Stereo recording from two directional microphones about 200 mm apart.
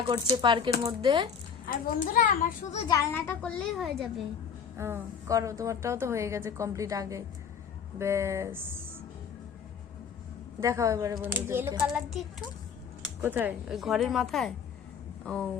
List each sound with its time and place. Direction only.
0.1 s speech: 25° right (ahead or behind)
1.6 s a child's voice: 40° left (ahead or behind)
2.8 s a woman's voice: 15° left (ahead or behind); by 4.1 s centre (ahead or behind)
4.8 s a woman's voice: 15° right (ahead or behind)
10.6 s a woman's voice: 15° right (ahead or behind)
13.2 s speech: 10° right (ahead or behind)